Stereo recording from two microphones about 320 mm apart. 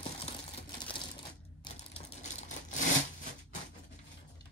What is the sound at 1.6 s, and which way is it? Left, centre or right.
Typewriter, left.